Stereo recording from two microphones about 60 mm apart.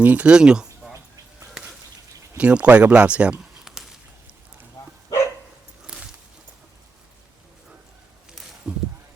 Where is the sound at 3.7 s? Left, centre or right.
Centre.